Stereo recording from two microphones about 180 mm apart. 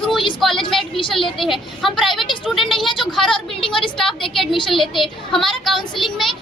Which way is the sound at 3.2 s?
30° left (ahead or behind).